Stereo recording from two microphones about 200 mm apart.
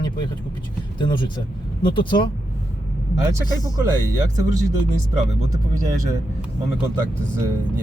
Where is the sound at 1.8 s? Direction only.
25° left (ahead or behind).